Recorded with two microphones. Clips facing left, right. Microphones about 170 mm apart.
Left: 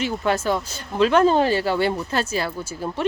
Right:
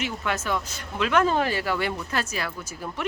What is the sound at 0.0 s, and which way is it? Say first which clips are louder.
Speech: left 7 dB; 30° left (ahead or behind).